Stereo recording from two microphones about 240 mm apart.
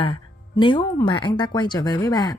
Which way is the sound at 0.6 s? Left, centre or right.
Centre.